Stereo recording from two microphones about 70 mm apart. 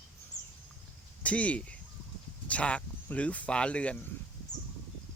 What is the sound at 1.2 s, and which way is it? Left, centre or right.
Speech, centre.